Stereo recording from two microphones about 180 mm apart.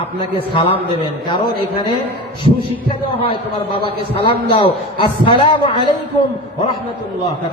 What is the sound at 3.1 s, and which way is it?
A man's voice, 30° left (ahead or behind).